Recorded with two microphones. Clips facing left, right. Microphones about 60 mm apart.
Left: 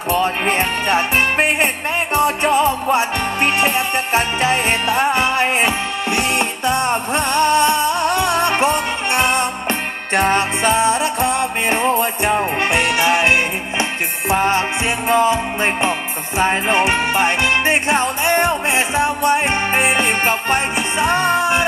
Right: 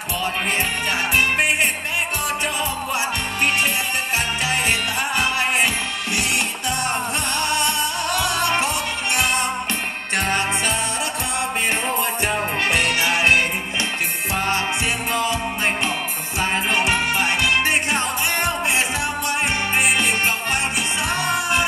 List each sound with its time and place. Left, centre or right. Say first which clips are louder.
0.1 s music: left 6 dB; left